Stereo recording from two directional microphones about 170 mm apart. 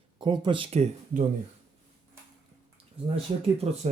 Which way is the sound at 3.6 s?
35° right (ahead or behind).